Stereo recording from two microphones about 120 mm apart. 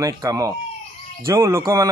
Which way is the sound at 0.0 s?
30° right (ahead or behind).